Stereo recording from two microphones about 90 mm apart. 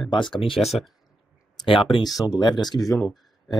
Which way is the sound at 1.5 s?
70° left (ahead or behind).